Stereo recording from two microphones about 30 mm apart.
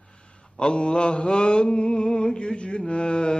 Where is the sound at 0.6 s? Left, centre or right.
Left.